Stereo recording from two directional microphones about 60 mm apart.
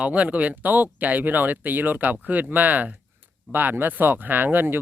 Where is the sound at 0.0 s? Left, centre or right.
Right.